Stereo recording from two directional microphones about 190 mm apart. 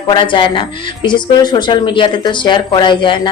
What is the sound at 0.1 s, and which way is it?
A woman's voice, 25° left (ahead or behind).